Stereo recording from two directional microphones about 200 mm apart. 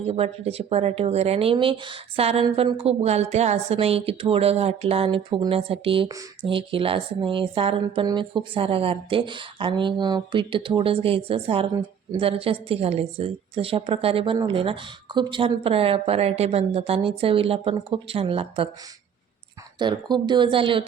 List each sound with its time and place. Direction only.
0.0 s speech: 30° right (ahead or behind)
19.8 s speech: 20° right (ahead or behind)